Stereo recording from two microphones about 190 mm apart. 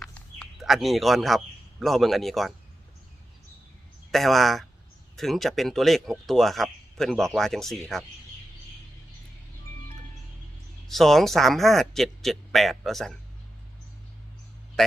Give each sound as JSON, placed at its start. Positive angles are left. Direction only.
{"t": 0.0, "sound": "a sound", "side_deg": 5}
{"t": 1.8, "sound": "speech", "side_deg": 0}
{"t": 4.1, "sound": "speech", "side_deg": 0}
{"t": 10.8, "sound": "speech", "side_deg": 0}
{"t": 14.8, "sound": "a man's voice", "side_deg": 0}